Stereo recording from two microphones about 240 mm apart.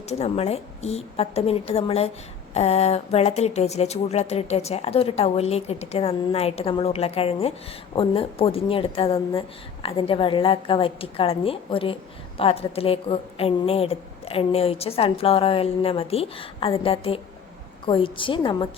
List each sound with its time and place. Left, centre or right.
0.1 s speech: left